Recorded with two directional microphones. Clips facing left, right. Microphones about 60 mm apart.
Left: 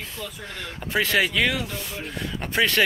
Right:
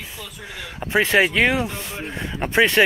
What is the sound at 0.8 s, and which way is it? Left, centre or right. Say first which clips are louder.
Speech: right 5 dB; right.